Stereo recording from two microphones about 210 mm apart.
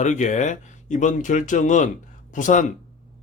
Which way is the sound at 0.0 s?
35° left (ahead or behind).